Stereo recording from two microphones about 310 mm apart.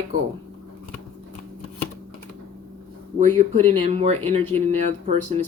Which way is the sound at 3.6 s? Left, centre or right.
Centre.